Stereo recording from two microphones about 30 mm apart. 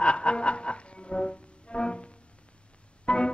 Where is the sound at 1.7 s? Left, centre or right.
Left.